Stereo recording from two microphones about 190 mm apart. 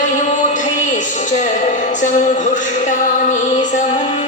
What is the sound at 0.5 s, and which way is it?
A woman's voice, 40° left (ahead or behind).